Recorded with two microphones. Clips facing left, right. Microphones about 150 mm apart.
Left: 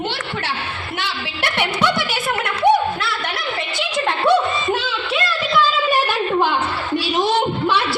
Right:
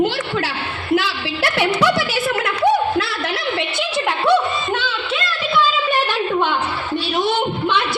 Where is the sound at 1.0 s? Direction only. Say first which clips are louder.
Right 3 dB; 90° right.